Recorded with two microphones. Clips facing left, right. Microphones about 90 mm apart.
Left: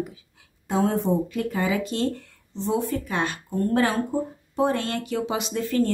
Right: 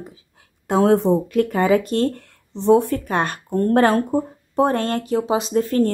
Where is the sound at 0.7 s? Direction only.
75° right (ahead or behind).